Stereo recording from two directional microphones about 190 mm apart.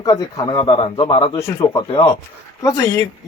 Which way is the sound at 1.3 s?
15° left (ahead or behind).